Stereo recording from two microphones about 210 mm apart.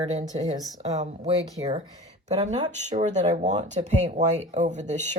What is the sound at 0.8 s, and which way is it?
Speech, 30° right (ahead or behind).